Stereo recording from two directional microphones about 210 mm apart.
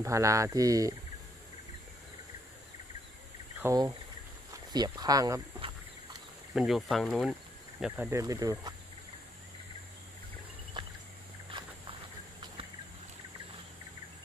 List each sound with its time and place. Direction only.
0.0 s speech: 15° right (ahead or behind)
3.6 s speech: 20° right (ahead or behind)
6.5 s speech: centre (ahead or behind)
10.8 s a sound: 20° right (ahead or behind)